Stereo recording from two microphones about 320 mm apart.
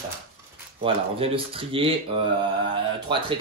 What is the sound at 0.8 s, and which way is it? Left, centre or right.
Speech, centre.